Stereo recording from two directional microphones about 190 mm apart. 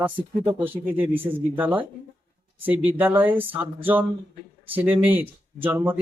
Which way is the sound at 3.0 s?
10° right (ahead or behind).